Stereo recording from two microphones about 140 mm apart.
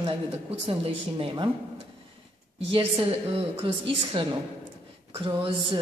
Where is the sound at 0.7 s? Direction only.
40° right (ahead or behind).